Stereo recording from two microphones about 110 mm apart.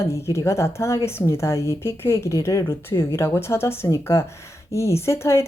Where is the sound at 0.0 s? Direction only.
25° left (ahead or behind).